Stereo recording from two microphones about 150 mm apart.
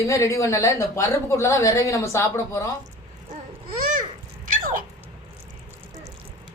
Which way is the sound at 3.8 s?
60° right (ahead or behind).